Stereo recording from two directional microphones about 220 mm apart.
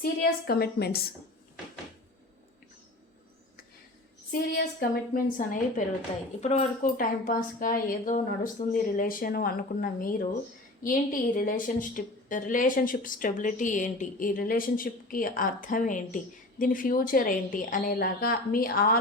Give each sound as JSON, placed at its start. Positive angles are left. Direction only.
{"t": 0.0, "sound": "a woman's voice", "side_deg": 45}
{"t": 4.3, "sound": "a woman's voice", "side_deg": 40}